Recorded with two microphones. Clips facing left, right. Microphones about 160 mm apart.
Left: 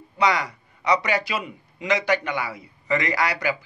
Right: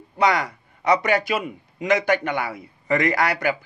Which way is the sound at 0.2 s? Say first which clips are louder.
Right 2 dB; 50° right (ahead or behind).